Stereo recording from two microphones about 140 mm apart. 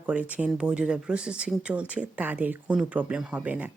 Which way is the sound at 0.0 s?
10° right (ahead or behind).